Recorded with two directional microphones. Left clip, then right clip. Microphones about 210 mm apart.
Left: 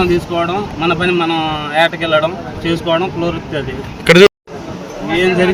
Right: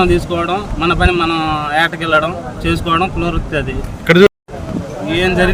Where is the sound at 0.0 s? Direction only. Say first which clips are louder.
Even; 25° right (ahead or behind).